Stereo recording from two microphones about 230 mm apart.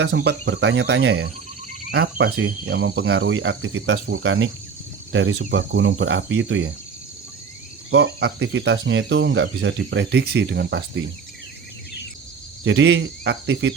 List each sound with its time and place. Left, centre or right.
0.0 s speech: right
1.8 s cricket: right
2.3 s speech: right
7.9 s speech: right
12.6 s speech: right